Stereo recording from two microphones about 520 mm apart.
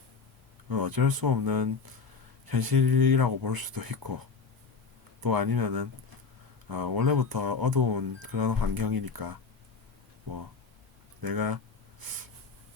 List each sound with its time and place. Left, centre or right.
0.7 s speech: right
5.2 s speech: right
11.2 s a sound: right